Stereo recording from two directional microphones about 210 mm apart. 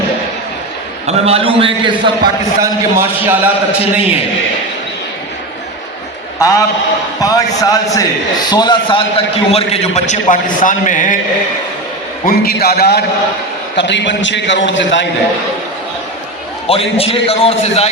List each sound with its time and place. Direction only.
1.0 s a man's voice: 30° right (ahead or behind); by 3.5 s 10° right (ahead or behind)
6.4 s a man's voice: 15° left (ahead or behind); by 11.2 s 35° left (ahead or behind)
12.2 s a man's voice: 45° left (ahead or behind)
16.6 s a man's voice: 25° left (ahead or behind)